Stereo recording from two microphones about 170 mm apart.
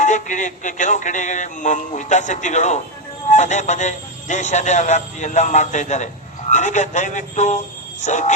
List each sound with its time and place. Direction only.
0.0 s music: 45° left (ahead or behind)